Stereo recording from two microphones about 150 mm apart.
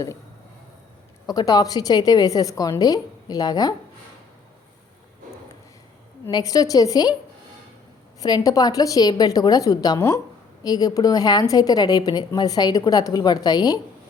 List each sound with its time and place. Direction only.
1.3 s a woman's voice: 25° left (ahead or behind)
6.3 s a woman's voice: 25° left (ahead or behind)
8.2 s a woman's voice: 25° left (ahead or behind)